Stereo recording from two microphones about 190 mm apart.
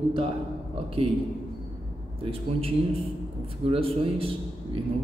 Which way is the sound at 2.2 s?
30° right (ahead or behind).